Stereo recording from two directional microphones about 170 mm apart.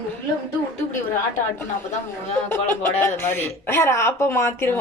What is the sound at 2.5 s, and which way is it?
A woman's voice, 15° left (ahead or behind).